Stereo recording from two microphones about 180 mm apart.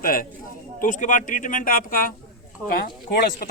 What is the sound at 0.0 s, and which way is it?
Speech, 50° left (ahead or behind).